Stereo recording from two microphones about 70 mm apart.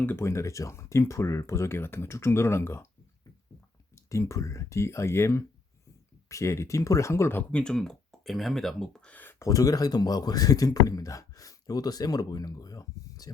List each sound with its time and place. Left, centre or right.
0.0 s speech: left
0.3 s speech: left
3.9 s speech: left
7.5 s speech: centre
9.4 s speech: left